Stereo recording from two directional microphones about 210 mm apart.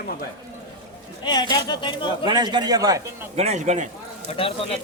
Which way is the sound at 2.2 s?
20° right (ahead or behind).